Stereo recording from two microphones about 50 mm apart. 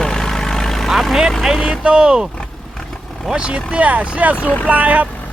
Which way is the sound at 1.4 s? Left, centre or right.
Centre.